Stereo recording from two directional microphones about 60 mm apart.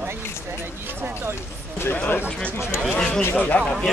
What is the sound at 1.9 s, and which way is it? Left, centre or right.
Speech, left.